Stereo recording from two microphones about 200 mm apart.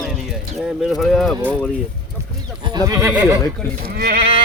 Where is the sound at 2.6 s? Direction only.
20° right (ahead or behind).